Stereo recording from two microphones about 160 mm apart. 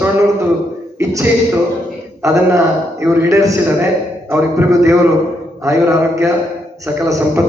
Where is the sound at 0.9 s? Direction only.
15° right (ahead or behind).